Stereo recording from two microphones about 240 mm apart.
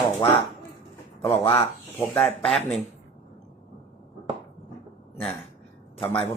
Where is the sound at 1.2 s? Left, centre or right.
Left.